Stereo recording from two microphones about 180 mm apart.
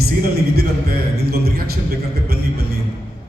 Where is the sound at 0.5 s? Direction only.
60° right (ahead or behind).